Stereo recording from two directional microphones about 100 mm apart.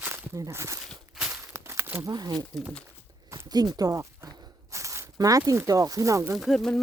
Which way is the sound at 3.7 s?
40° right (ahead or behind).